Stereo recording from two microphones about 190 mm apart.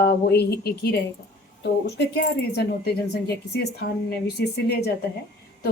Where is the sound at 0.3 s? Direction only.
60° left (ahead or behind).